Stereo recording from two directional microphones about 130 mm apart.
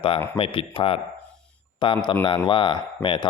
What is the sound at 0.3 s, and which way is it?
A man's voice, 45° left (ahead or behind).